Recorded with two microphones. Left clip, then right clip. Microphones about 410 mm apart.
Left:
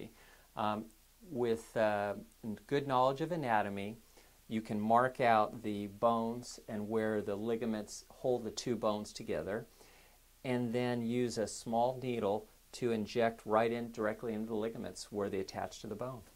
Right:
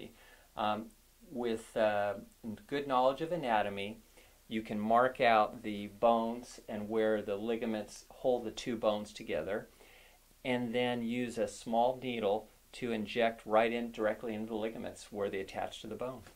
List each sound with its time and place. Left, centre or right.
1.4 s speech: left
4.5 s speech: left